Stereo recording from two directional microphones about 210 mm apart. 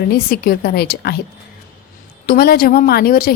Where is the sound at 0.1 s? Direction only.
45° left (ahead or behind).